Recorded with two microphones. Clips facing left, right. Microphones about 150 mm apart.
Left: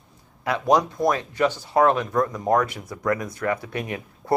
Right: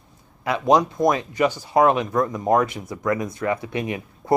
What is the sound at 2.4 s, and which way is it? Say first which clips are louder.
Speech: right 2 dB; 20° right (ahead or behind).